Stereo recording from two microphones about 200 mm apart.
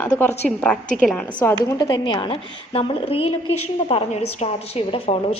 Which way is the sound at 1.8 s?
20° left (ahead or behind).